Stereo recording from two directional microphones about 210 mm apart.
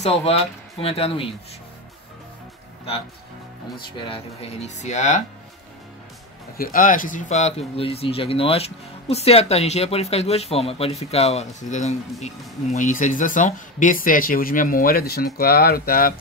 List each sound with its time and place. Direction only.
0.0 s speech: 30° left (ahead or behind)
3.7 s speech: 25° left (ahead or behind)
6.5 s speech: 45° left (ahead or behind)